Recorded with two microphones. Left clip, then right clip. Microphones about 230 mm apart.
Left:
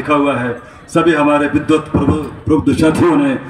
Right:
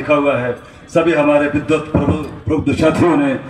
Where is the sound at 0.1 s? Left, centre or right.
Left.